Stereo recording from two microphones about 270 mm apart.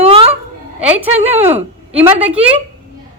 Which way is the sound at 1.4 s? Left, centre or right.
Centre.